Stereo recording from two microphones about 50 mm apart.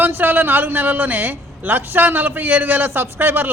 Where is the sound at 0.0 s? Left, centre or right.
Right.